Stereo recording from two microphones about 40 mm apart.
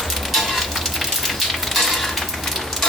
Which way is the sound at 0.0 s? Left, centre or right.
Centre.